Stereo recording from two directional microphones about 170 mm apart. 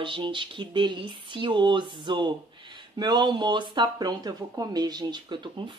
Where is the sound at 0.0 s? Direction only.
30° right (ahead or behind).